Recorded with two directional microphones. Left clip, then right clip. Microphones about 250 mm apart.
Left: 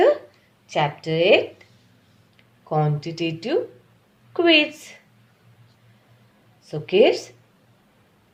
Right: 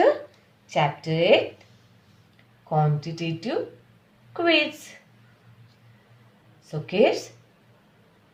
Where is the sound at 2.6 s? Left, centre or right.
Left.